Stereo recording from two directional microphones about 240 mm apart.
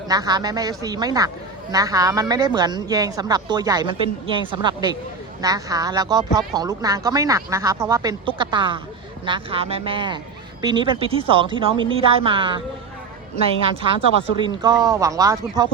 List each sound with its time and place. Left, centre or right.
0.1 s a woman's voice: centre
14.4 s speech: centre